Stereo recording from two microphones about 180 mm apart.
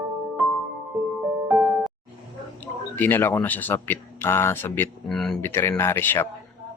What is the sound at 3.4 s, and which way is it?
Speech, 10° left (ahead or behind).